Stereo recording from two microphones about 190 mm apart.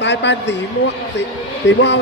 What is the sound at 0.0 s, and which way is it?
Speech, 65° left (ahead or behind).